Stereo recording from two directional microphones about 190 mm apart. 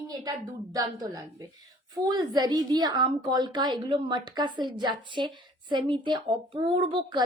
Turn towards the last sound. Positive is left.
turn(degrees=-25)  # may be behind; listen again after turning